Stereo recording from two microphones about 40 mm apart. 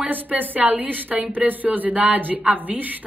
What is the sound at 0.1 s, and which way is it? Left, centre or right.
A woman's voice, right.